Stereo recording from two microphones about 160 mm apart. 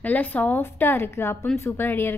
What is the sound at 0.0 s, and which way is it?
A woman's voice, 10° left (ahead or behind).